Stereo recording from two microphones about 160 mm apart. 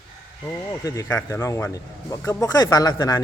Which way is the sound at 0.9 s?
20° left (ahead or behind).